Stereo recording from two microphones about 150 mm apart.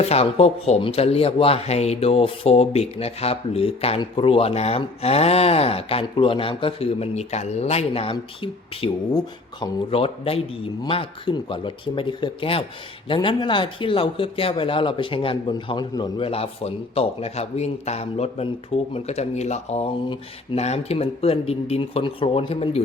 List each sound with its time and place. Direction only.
0.0 s speech: 45° left (ahead or behind)